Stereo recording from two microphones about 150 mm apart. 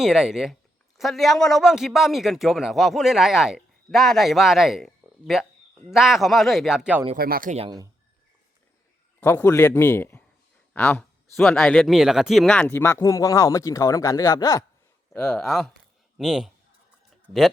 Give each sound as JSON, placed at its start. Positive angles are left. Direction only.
{"t": 0.0, "sound": "speech", "side_deg": -5}
{"t": 7.2, "sound": "speech", "side_deg": -80}
{"t": 9.2, "sound": "speech", "side_deg": 15}
{"t": 11.3, "sound": "speech", "side_deg": 0}
{"t": 15.1, "sound": "speech", "side_deg": 5}